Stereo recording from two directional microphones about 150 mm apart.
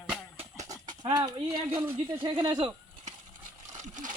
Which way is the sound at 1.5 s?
35° right (ahead or behind).